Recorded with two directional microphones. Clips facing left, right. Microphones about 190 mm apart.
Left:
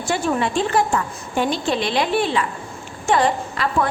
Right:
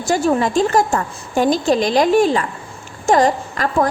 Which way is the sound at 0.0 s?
40° right (ahead or behind).